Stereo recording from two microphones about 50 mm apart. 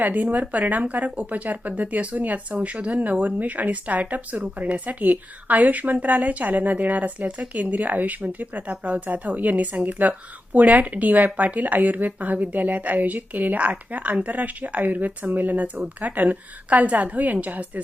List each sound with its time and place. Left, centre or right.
0.0 s a woman's voice: right